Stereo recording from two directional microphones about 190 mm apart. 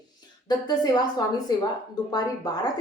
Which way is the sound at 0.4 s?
20° left (ahead or behind).